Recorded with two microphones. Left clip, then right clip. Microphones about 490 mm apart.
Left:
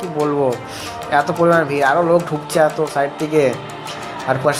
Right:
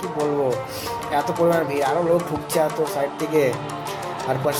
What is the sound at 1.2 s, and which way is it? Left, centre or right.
Speech, right.